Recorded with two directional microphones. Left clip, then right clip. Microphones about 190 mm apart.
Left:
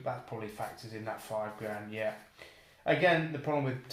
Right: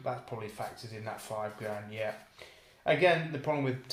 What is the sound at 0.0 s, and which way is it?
Speech, 40° right (ahead or behind).